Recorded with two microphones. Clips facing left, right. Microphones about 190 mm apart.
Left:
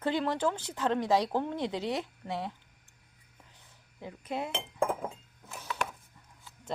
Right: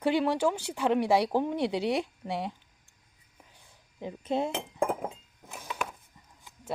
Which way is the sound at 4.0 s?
25° right (ahead or behind).